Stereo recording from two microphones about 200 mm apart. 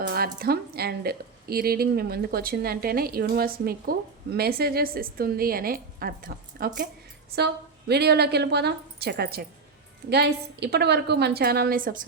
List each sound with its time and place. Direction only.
0.0 s a woman's voice: 50° right (ahead or behind)
7.3 s a woman's voice: 55° right (ahead or behind)